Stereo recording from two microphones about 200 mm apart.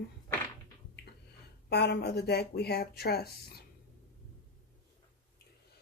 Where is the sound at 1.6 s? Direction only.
55° left (ahead or behind).